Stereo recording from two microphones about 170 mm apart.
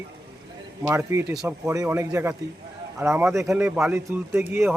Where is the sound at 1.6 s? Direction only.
20° right (ahead or behind).